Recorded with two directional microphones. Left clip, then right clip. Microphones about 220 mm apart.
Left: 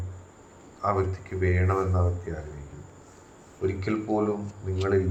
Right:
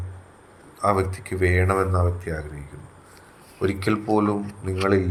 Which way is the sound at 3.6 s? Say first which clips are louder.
Right 5 dB; 45° right (ahead or behind).